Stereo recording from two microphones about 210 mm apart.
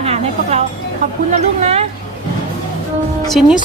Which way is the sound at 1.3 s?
30° right (ahead or behind).